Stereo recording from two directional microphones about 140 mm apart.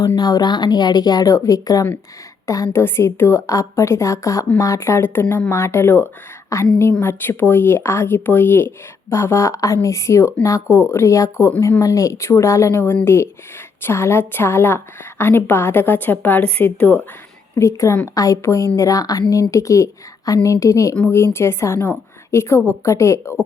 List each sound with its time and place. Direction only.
0.0 s a woman's voice: 25° left (ahead or behind)